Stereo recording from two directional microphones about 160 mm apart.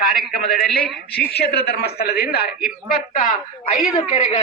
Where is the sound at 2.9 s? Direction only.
60° left (ahead or behind).